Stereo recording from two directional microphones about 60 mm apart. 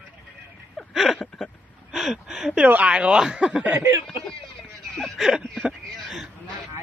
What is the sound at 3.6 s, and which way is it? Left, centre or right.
Speech, right.